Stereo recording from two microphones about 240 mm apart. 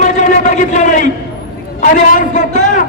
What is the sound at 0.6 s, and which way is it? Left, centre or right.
A man's voice, left.